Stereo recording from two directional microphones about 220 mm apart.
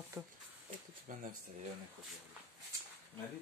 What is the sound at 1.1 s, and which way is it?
Speech, 40° right (ahead or behind).